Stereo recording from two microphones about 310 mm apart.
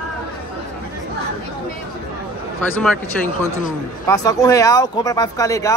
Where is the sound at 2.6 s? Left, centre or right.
Centre.